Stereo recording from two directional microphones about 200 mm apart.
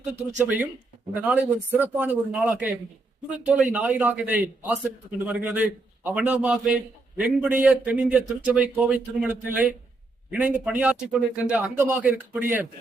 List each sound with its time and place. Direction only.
1.2 s a man's voice: 10° right (ahead or behind)